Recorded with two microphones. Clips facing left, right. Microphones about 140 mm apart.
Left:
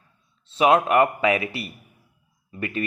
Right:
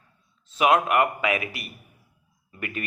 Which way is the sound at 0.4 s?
30° left (ahead or behind).